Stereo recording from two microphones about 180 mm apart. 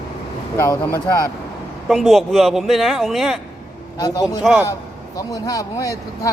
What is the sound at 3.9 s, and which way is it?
Speech, 20° left (ahead or behind).